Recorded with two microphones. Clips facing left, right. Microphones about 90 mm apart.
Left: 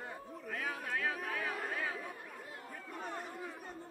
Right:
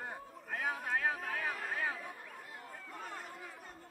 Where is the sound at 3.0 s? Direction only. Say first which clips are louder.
Left 6 dB; 20° left (ahead or behind).